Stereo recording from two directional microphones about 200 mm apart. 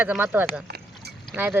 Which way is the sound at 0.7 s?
55° right (ahead or behind).